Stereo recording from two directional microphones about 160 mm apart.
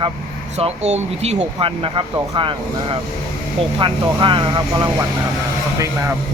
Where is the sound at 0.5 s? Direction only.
45° right (ahead or behind); by 6.1 s 20° right (ahead or behind).